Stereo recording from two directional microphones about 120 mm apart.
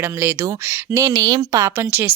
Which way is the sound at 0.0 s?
20° right (ahead or behind).